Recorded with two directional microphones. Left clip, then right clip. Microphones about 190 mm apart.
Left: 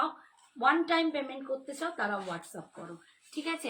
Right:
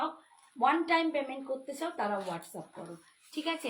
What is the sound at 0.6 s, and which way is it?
A woman's voice, 15° left (ahead or behind).